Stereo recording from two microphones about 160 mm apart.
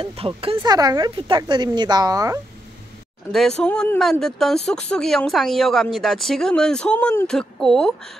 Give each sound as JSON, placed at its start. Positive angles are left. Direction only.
{"t": 0.0, "sound": "speech", "side_deg": -35}
{"t": 3.3, "sound": "a woman's voice", "side_deg": 0}